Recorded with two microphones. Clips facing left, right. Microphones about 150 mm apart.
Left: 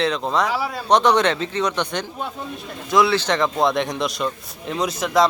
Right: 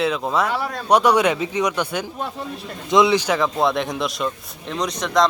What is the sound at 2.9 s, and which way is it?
Speech, 20° right (ahead or behind).